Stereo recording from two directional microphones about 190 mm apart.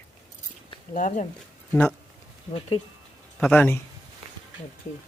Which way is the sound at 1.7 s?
5° left (ahead or behind).